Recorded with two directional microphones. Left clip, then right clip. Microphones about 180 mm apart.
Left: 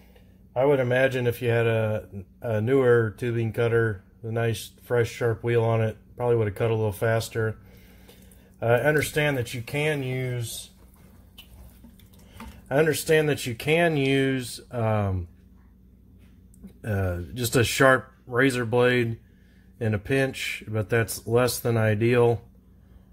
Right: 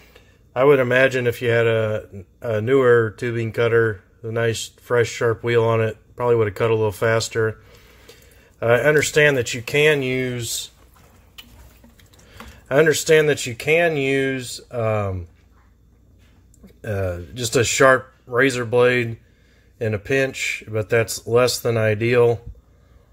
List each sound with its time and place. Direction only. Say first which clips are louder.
0.5 s a man's voice: right 7 dB; 35° right (ahead or behind)
0.7 s a man's voice: right 6 dB; 15° right (ahead or behind); by 10.4 s 40° right (ahead or behind)
12.6 s speech: right 6 dB; 10° right (ahead or behind); by 15.1 s 5° left (ahead or behind)
16.8 s speech: right 5 dB; 5° left (ahead or behind)